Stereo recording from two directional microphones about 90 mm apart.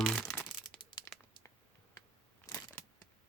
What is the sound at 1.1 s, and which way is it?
Crumpling, 25° left (ahead or behind).